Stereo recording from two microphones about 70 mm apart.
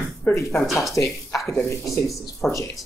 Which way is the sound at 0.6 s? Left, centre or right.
Centre.